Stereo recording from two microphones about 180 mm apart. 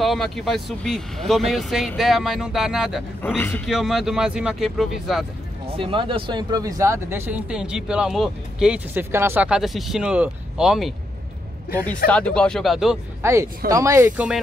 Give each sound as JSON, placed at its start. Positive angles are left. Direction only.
{"t": 0.0, "sound": "speech", "side_deg": 0}
{"t": 3.2, "sound": "a man's voice", "side_deg": 10}
{"t": 3.6, "sound": "speech", "side_deg": 0}
{"t": 5.8, "sound": "speech", "side_deg": -30}
{"t": 12.1, "sound": "speech", "side_deg": 5}
{"t": 13.2, "sound": "speech", "side_deg": -15}